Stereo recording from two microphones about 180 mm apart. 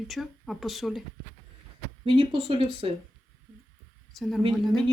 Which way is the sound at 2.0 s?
30° right (ahead or behind).